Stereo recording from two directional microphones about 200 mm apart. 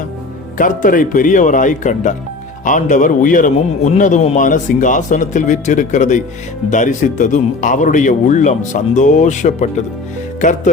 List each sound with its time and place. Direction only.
0.6 s a man's voice: 40° left (ahead or behind)